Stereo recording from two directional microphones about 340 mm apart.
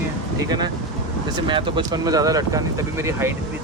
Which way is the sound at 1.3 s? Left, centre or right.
Centre.